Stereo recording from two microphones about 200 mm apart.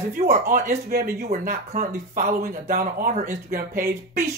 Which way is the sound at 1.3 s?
40° right (ahead or behind).